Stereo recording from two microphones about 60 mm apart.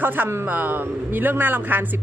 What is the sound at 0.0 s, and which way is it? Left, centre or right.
Speech, right.